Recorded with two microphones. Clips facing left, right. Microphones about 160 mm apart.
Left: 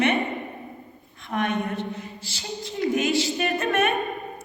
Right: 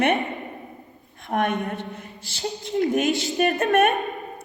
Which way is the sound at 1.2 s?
50° right (ahead or behind).